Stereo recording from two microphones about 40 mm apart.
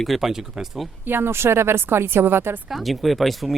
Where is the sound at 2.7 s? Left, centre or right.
Centre.